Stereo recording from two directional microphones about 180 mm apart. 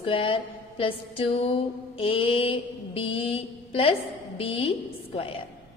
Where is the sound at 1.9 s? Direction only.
30° left (ahead or behind).